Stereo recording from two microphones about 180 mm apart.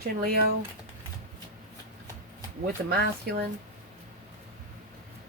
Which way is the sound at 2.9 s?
60° right (ahead or behind).